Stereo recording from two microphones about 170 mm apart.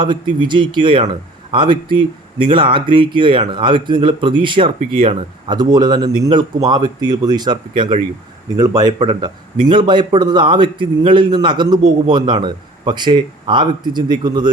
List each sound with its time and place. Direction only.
0.0 s a man's voice: 30° right (ahead or behind)